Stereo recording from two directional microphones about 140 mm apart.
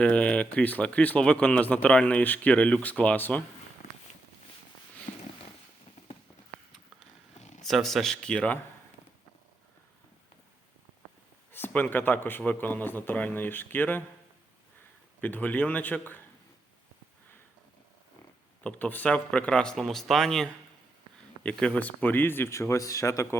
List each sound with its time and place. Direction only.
0.0 s speech: 10° left (ahead or behind)
5.1 s a sound: 60° left (ahead or behind)
7.6 s speech: centre (ahead or behind)
11.5 s speech: 15° left (ahead or behind)
15.2 s speech: 10° left (ahead or behind)
18.6 s speech: 10° left (ahead or behind)